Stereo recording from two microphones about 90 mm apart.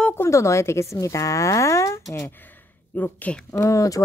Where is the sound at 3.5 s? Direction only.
35° left (ahead or behind).